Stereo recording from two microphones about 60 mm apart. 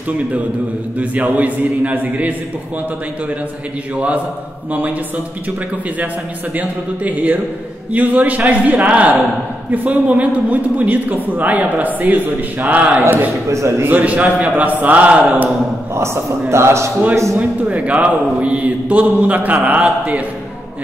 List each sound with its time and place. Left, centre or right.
0.9 s a man's voice: right
3.9 s a man's voice: right
6.5 s a man's voice: right
13.5 s a man's voice: right
13.8 s a man's voice: right
15.9 s a man's voice: right
17.4 s a man's voice: right